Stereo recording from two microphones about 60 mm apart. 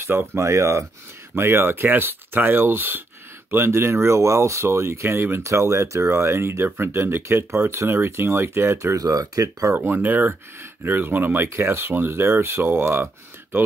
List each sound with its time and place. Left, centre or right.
0.4 s speech: right
1.3 s speech: right
5.4 s speech: right
8.7 s speech: right
9.8 s speech: right